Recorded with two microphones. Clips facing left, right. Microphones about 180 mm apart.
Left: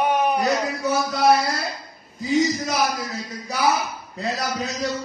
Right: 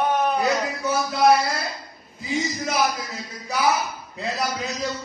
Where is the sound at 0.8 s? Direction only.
Centre (ahead or behind).